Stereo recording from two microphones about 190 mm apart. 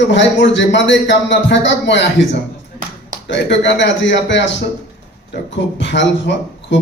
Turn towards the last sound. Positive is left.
turn(degrees=70)  # may be behind; listen again after turning